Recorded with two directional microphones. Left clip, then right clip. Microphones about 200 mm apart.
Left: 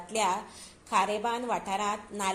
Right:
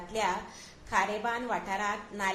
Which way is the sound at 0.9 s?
35° left (ahead or behind).